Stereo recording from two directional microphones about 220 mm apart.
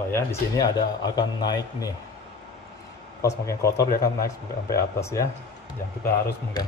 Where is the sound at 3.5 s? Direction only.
15° left (ahead or behind).